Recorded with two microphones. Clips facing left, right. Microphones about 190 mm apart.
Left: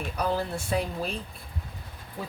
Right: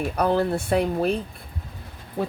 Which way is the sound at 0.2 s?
60° right (ahead or behind).